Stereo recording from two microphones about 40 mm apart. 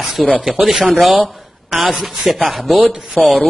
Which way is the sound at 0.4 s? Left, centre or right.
Centre.